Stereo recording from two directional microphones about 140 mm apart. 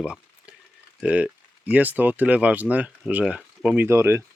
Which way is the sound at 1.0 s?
10° right (ahead or behind).